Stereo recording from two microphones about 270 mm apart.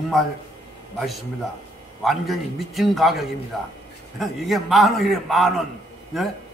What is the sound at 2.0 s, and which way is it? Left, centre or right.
A man's voice, centre.